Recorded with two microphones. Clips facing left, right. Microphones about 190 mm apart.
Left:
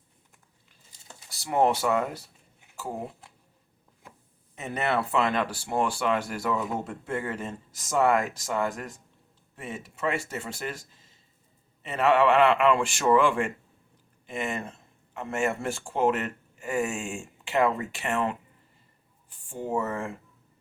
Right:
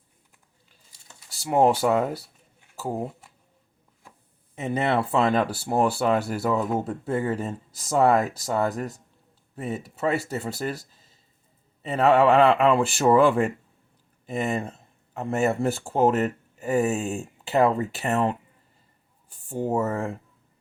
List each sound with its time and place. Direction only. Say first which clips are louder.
1.5 s speech: right 4 dB; 30° right (ahead or behind)
4.6 s speech: right 4 dB; 30° right (ahead or behind)